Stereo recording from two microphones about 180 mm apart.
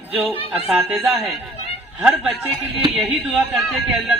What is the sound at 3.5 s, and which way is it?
Speech, centre (ahead or behind).